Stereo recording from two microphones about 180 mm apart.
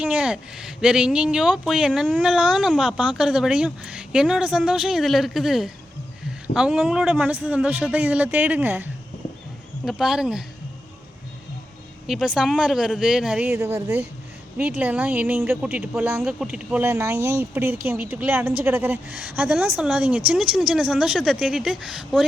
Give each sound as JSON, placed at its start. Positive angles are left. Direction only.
{"t": 0.0, "sound": "speech", "side_deg": -5}
{"t": 12.0, "sound": "speech", "side_deg": 0}